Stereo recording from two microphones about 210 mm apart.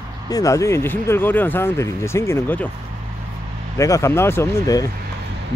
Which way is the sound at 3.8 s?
15° left (ahead or behind).